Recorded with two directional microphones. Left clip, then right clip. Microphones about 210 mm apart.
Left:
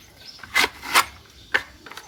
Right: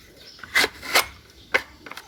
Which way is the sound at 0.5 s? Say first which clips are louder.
Left 1 dB; 15° right (ahead or behind).